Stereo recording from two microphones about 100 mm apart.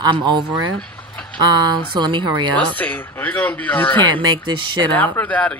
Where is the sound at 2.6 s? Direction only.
15° left (ahead or behind).